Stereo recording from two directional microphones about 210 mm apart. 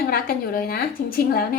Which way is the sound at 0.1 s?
45° left (ahead or behind).